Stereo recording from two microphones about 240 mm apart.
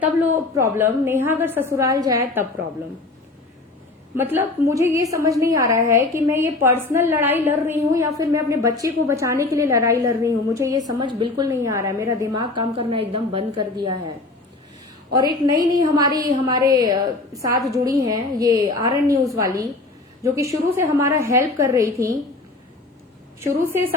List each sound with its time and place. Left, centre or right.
0.0 s a woman's voice: centre
4.1 s a woman's voice: centre
15.1 s a woman's voice: centre
20.2 s a woman's voice: centre
23.4 s a woman's voice: centre